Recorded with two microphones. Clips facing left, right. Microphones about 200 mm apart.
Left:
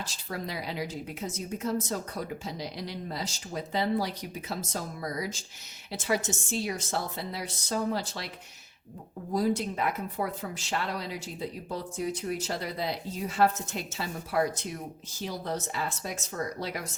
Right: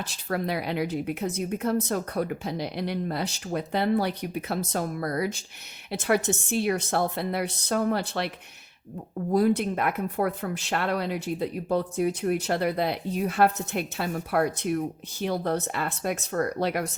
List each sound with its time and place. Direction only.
0.0 s speech: 60° right (ahead or behind)
9.3 s speech: 60° right (ahead or behind)